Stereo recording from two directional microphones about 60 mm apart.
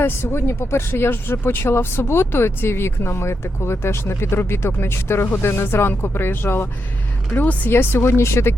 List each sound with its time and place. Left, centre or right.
0.0 s speech: left
7.4 s speech: left
7.7 s speech: left